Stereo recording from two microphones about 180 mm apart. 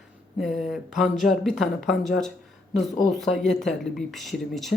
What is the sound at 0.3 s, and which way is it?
Speech, centre (ahead or behind).